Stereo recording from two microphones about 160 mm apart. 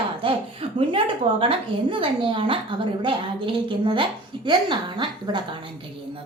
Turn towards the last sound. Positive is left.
turn(degrees=-30)  # may be behind; listen again after turning